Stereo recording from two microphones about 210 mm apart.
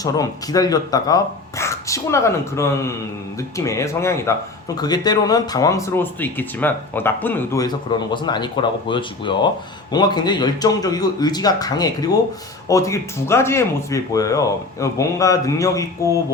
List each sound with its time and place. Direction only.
0.0 s a man's voice: 15° left (ahead or behind)